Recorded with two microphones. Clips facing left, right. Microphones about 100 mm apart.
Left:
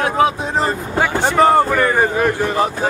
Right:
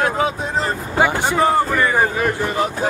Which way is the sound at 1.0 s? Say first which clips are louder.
Right 1 dB; 10° right (ahead or behind).